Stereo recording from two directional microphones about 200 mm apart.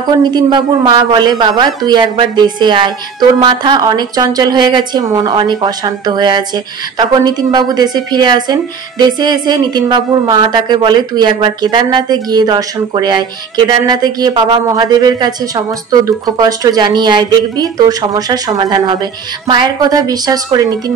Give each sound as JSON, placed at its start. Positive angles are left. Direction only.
{"t": 0.2, "sound": "a woman's voice", "side_deg": -20}